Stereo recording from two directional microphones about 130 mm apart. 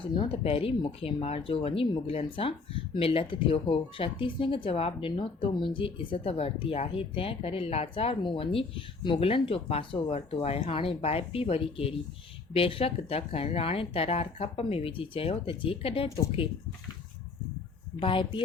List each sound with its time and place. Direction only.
0.0 s speech: 45° left (ahead or behind)
18.0 s speech: 40° left (ahead or behind)